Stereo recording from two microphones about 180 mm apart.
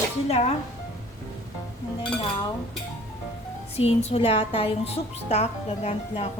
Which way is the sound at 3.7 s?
35° left (ahead or behind).